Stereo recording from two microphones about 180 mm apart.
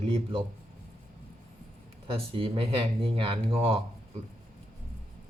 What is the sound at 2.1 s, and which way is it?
Speech, 30° right (ahead or behind).